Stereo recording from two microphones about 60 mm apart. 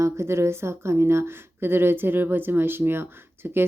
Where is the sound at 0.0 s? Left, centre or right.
Right.